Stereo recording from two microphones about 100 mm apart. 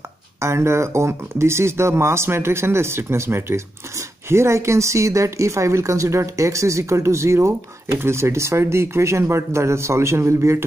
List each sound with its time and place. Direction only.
0.4 s speech: 25° right (ahead or behind)